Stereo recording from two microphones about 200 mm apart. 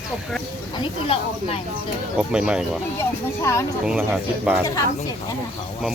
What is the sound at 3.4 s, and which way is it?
Speech, 15° left (ahead or behind).